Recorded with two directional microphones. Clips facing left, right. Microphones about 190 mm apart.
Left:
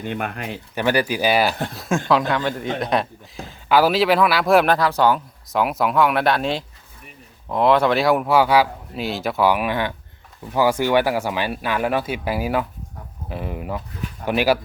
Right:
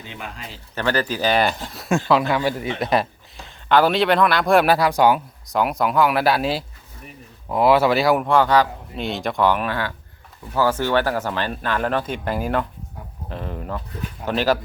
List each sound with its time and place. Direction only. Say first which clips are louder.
0.0 s speech: left 8 dB; 55° left (ahead or behind)
0.8 s speech: left 2 dB; 15° left (ahead or behind); by 5.2 s 10° right (ahead or behind)
5.5 s speech: even; centre (ahead or behind)